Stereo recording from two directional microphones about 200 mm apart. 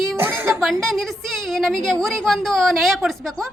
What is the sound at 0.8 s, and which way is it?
A woman's voice, centre (ahead or behind).